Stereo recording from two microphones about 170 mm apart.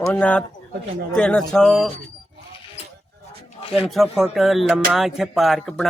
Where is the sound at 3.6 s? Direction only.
35° left (ahead or behind).